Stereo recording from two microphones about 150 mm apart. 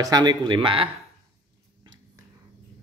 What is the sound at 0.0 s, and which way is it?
Speech, 25° right (ahead or behind).